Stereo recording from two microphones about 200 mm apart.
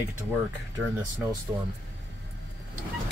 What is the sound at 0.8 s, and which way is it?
Speech, 10° right (ahead or behind).